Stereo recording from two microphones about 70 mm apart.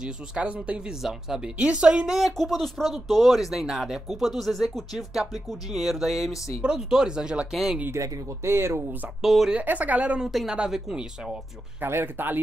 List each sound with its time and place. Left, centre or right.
0.0 s speech: centre
7.9 s speech: right
9.2 s speech: centre
9.6 s a woman's voice: right
11.8 s speech: right